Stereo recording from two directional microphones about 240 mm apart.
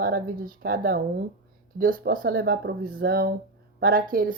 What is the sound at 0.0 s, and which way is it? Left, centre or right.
Speech, right.